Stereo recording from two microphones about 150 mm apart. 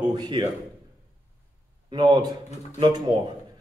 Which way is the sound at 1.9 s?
25° right (ahead or behind).